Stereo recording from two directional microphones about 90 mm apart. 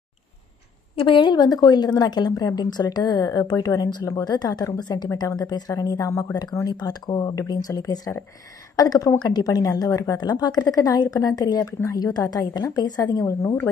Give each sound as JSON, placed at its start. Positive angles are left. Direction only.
{"t": 0.9, "sound": "a woman's voice", "side_deg": 65}